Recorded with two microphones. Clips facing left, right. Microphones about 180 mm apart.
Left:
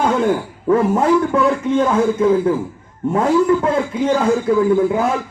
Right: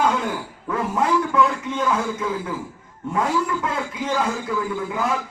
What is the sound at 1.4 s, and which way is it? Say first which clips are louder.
A man's voice: left 6 dB; 50° left (ahead or behind).